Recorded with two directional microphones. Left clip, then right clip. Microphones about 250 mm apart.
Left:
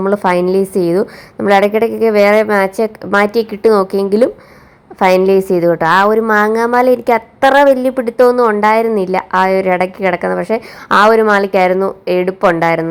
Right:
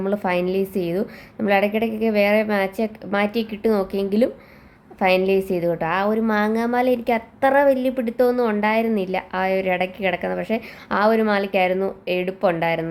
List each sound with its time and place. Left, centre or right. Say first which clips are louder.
0.0 s a woman's voice: left 9 dB; centre